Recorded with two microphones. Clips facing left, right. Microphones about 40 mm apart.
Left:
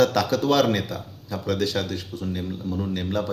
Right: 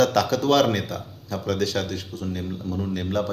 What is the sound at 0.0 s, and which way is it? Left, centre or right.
Speech, centre.